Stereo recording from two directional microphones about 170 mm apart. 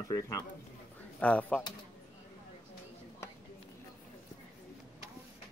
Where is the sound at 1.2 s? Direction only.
10° left (ahead or behind).